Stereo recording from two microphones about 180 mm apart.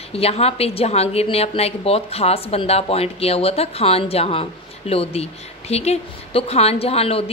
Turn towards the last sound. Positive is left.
turn(degrees=35)  # may be behind; listen again after turning